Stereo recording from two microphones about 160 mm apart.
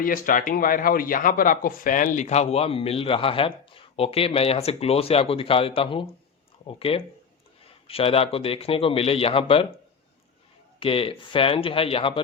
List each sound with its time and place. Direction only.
0.0 s a man's voice: 60° left (ahead or behind); by 9.6 s 35° left (ahead or behind)
10.8 s a man's voice: 35° left (ahead or behind)